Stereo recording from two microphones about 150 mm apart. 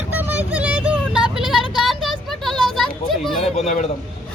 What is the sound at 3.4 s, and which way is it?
Speech, 45° left (ahead or behind).